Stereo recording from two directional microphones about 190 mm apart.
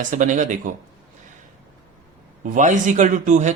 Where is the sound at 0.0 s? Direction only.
40° right (ahead or behind).